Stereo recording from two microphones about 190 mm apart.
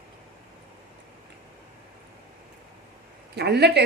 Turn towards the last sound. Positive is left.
turn(degrees=-60)  # may be behind; listen again after turning